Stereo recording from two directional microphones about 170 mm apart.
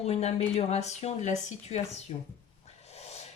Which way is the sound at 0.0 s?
40° left (ahead or behind).